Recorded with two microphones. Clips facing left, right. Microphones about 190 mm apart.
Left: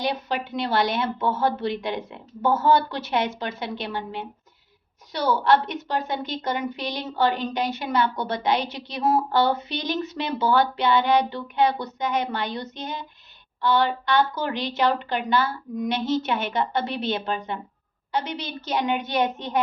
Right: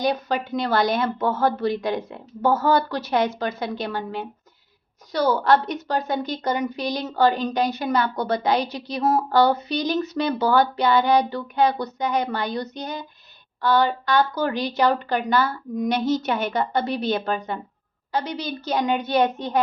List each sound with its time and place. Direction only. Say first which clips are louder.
0.0 s a woman's voice: right 3 dB; 40° right (ahead or behind)